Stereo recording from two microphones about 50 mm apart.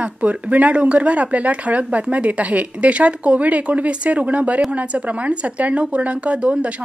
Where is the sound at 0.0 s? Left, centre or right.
Right.